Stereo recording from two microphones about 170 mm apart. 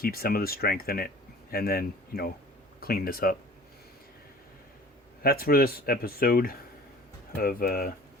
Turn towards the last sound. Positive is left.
turn(degrees=60)  # may be behind; listen again after turning